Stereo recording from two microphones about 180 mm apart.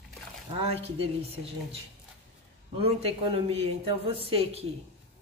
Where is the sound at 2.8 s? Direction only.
35° right (ahead or behind).